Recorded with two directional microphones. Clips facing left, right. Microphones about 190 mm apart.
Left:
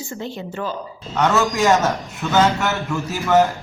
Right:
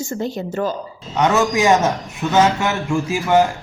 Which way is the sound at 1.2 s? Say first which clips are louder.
Right 2 dB; 15° right (ahead or behind).